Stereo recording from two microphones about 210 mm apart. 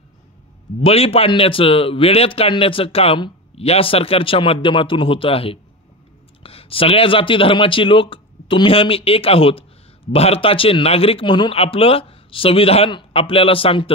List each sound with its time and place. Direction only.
0.8 s speech: 25° left (ahead or behind)